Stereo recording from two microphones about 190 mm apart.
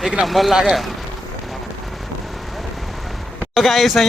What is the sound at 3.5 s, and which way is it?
Speech, centre (ahead or behind).